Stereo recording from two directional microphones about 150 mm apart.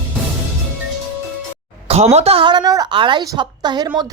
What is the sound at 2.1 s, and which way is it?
A woman's voice, 40° right (ahead or behind).